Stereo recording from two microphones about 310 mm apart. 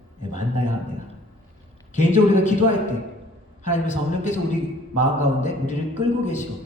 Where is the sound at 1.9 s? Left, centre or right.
Left.